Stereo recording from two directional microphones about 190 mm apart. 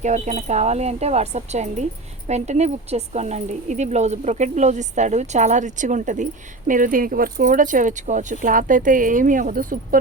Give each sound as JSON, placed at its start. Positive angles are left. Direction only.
{"t": 0.0, "sound": "speech", "side_deg": -40}